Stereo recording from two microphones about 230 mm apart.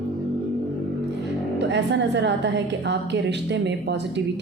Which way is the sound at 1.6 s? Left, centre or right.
Right.